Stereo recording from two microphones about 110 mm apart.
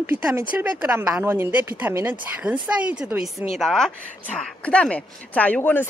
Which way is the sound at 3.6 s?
5° left (ahead or behind).